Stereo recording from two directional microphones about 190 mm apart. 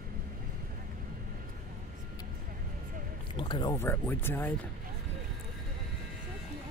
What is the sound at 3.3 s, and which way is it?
Music, 25° left (ahead or behind).